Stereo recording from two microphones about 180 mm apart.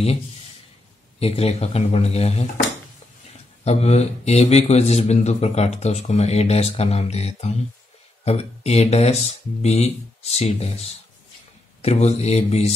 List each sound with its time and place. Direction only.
1.2 s speech: 35° left (ahead or behind)
3.6 s speech: 35° left (ahead or behind)